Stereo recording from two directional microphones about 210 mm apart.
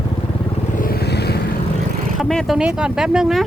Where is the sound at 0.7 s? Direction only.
45° left (ahead or behind).